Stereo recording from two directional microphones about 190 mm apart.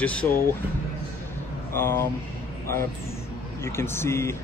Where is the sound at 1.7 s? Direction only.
15° left (ahead or behind).